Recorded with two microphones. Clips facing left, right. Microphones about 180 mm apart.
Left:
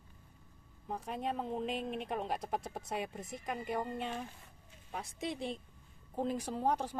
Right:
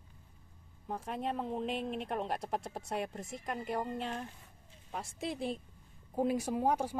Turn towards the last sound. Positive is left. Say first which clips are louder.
# right 2 dB
turn(degrees=-10)  # may be behind; listen again after turning